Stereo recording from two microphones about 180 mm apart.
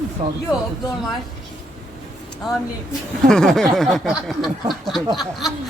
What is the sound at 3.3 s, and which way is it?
Speech, 5° left (ahead or behind).